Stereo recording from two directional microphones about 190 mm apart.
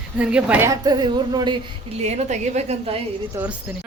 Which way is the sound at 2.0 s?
35° right (ahead or behind).